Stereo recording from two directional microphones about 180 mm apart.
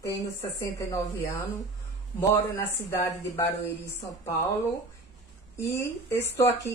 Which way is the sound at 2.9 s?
15° left (ahead or behind).